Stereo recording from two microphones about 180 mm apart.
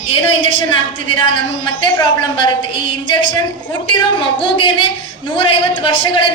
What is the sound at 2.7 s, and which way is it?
A woman's voice, 25° left (ahead or behind).